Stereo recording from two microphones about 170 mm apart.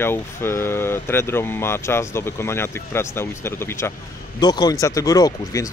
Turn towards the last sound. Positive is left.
turn(degrees=20)  # may be behind; listen again after turning